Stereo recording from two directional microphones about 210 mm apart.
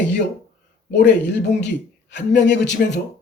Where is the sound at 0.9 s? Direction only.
55° left (ahead or behind).